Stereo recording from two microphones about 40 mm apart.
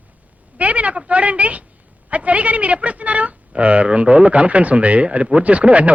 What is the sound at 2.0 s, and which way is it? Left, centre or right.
A woman's voice, right.